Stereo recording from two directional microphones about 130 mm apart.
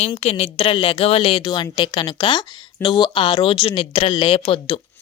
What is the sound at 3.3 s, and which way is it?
Speech, 50° left (ahead or behind).